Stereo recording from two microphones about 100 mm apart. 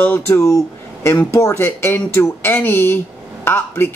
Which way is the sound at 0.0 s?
20° left (ahead or behind).